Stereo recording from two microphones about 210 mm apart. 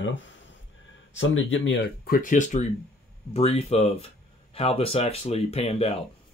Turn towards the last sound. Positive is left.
turn(degrees=30)  # may be behind; listen again after turning